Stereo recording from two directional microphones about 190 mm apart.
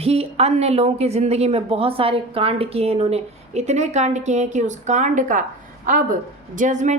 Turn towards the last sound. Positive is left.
turn(degrees=-40)  # may be behind; listen again after turning